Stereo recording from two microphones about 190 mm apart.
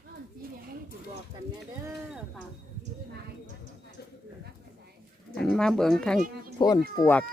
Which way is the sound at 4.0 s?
55° left (ahead or behind).